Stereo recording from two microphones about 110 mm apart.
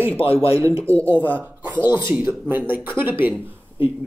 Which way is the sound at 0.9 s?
15° left (ahead or behind).